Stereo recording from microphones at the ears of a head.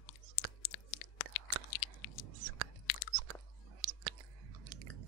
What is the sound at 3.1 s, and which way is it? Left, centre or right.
Chewing, right.